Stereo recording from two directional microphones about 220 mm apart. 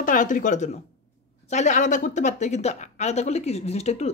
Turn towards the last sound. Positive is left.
turn(degrees=30)  # may be behind; listen again after turning